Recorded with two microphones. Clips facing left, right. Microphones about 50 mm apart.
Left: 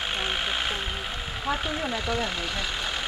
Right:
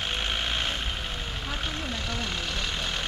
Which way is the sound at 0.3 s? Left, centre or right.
Centre.